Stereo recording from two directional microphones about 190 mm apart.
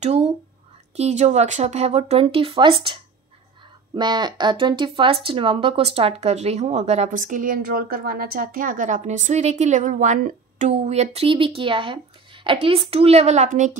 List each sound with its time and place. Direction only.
0.0 s speech: 35° right (ahead or behind)